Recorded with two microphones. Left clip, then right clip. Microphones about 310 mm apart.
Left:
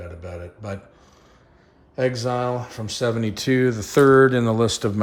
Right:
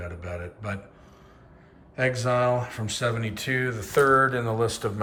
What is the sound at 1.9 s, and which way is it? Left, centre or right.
Speech, centre.